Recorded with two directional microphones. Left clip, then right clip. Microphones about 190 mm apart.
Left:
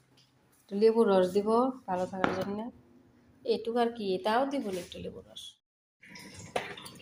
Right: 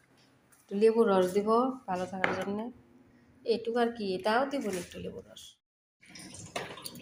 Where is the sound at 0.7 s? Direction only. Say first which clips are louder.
Even; 5° right (ahead or behind).